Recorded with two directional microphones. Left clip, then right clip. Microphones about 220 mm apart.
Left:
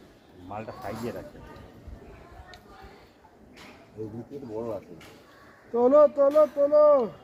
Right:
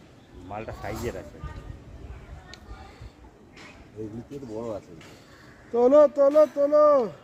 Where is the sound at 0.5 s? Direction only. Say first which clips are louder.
Right 1 dB; 45° right (ahead or behind).